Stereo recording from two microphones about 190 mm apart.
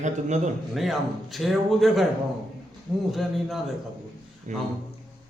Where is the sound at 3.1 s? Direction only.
Centre (ahead or behind).